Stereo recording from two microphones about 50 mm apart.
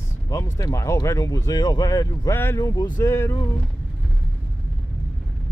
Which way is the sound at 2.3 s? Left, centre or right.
Left.